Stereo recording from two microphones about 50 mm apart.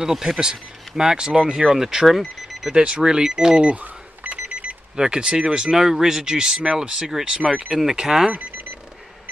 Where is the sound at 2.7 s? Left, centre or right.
Centre.